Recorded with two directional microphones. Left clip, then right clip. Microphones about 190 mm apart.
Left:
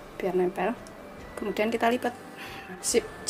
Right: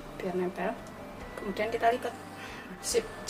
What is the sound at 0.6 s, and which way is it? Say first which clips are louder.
Speech: left 4 dB; 40° left (ahead or behind).